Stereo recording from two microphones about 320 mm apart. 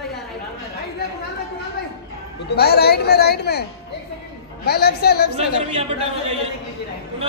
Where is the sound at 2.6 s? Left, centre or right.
Left.